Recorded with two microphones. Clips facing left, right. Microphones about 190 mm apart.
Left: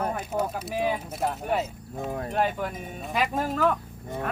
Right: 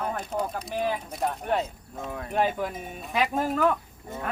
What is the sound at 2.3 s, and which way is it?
Speech, centre (ahead or behind).